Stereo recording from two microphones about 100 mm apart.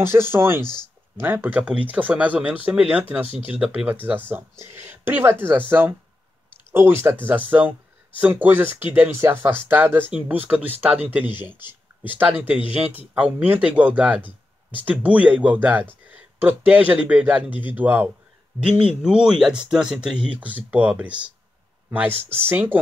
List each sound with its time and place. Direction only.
0.0 s speech: 25° right (ahead or behind)
0.7 s a sound: 45° left (ahead or behind)
1.2 s speech: 20° right (ahead or behind)